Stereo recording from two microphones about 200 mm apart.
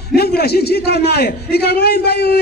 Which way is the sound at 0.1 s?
50° left (ahead or behind).